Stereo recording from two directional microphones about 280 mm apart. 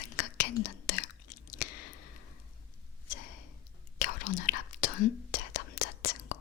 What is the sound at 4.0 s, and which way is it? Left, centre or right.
Whispering, left.